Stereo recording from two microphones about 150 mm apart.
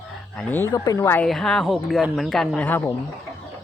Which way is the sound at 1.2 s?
5° left (ahead or behind).